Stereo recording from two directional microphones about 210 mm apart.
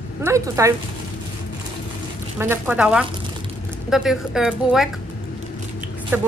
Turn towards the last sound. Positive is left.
turn(degrees=-10)  # may be behind; listen again after turning